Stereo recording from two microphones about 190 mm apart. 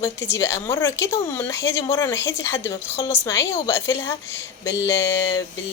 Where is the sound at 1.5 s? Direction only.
70° left (ahead or behind).